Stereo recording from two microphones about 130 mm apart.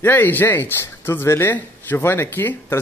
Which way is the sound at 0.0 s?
15° left (ahead or behind).